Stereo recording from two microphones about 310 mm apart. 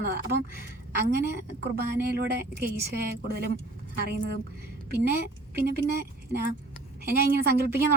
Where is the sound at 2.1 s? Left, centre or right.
Right.